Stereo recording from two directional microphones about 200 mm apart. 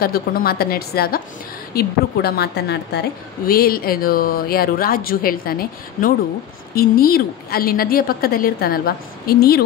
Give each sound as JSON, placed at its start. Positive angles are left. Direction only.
{"t": 0.0, "sound": "a woman's voice", "side_deg": 50}